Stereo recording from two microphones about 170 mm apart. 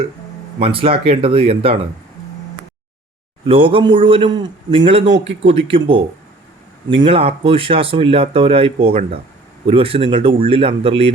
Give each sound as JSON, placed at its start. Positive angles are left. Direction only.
{"t": 0.6, "sound": "speech", "side_deg": -35}
{"t": 3.4, "sound": "speech", "side_deg": -30}
{"t": 5.2, "sound": "speech", "side_deg": -90}
{"t": 5.6, "sound": "speech", "side_deg": -30}